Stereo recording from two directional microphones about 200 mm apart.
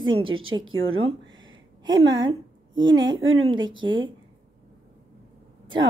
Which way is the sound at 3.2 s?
90° right.